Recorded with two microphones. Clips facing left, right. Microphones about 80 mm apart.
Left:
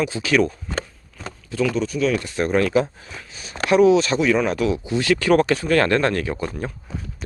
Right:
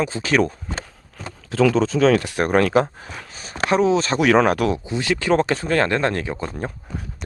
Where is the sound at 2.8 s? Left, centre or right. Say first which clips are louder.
Right 3 dB; right.